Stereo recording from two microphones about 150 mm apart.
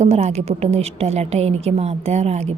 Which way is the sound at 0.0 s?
45° right (ahead or behind).